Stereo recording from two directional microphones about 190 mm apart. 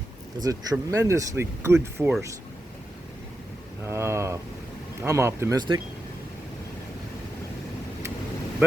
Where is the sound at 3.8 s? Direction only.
15° right (ahead or behind).